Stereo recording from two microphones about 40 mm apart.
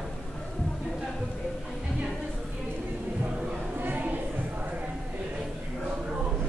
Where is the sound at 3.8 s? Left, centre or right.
Right.